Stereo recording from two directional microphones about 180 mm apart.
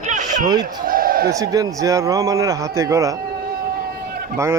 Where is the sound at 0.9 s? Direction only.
50° right (ahead or behind).